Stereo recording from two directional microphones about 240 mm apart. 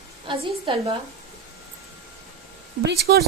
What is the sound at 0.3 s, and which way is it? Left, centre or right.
Speech, right.